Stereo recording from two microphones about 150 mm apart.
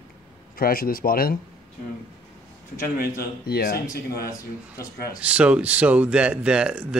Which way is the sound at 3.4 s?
90° left.